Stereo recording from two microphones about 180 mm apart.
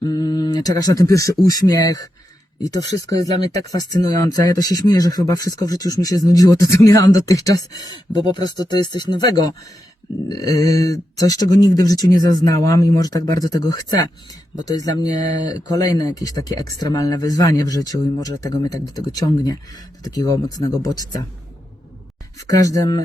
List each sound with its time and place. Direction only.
0.0 s speech: 20° left (ahead or behind)
3.1 s speech: 20° left (ahead or behind)
22.4 s speech: 20° left (ahead or behind)